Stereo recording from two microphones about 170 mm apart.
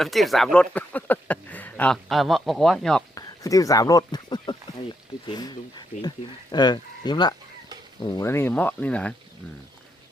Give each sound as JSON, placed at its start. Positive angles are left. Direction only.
{"t": 0.0, "sound": "speech", "side_deg": 0}
{"t": 3.2, "sound": "speech", "side_deg": 20}